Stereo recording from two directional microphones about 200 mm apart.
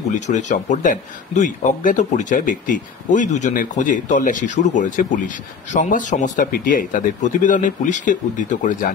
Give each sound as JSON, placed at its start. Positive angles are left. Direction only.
{"t": 0.1, "sound": "speech", "side_deg": 35}